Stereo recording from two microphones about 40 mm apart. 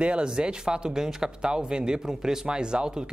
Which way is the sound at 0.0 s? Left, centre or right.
Right.